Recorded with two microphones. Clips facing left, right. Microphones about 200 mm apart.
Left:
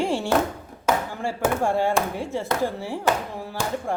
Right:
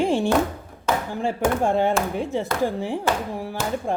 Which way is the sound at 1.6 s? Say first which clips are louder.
Right 1 dB; 20° right (ahead or behind).